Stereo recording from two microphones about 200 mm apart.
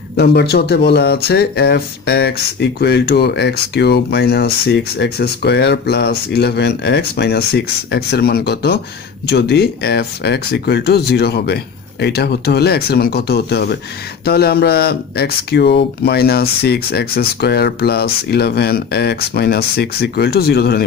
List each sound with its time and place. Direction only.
0.2 s speech: 55° left (ahead or behind)